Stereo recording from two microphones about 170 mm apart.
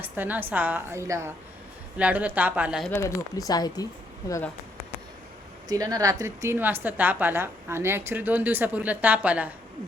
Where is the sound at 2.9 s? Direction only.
20° left (ahead or behind).